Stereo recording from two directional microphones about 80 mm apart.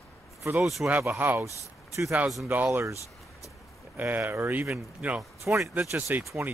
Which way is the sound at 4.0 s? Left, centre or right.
Right.